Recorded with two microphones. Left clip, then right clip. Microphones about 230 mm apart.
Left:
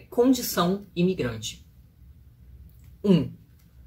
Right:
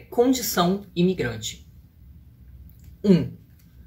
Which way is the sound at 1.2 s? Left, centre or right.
Centre.